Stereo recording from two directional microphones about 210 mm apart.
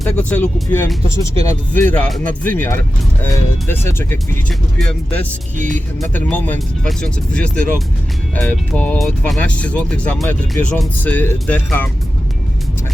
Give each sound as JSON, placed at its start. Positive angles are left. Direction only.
{"t": 0.2, "sound": "speech", "side_deg": 5}
{"t": 5.5, "sound": "speech", "side_deg": -40}
{"t": 6.1, "sound": "speech", "side_deg": 10}